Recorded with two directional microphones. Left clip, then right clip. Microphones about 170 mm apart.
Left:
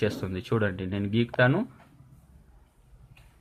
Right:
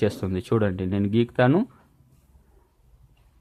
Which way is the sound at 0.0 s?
50° right (ahead or behind).